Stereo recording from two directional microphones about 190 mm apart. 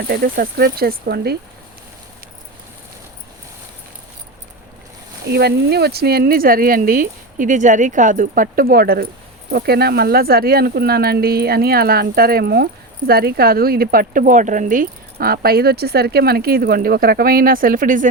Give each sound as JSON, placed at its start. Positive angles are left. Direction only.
{"t": 0.1, "sound": "speech", "side_deg": -50}
{"t": 5.2, "sound": "speech", "side_deg": -60}